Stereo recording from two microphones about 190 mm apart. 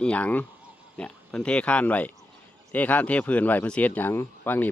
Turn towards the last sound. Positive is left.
turn(degrees=10)  # may be behind; listen again after turning